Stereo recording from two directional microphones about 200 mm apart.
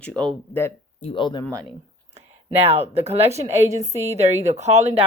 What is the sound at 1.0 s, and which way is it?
Speech, 25° left (ahead or behind).